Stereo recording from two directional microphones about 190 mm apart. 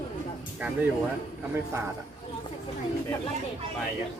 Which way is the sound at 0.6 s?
10° right (ahead or behind).